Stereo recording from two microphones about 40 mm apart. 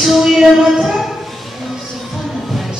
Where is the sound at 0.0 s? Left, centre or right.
Centre.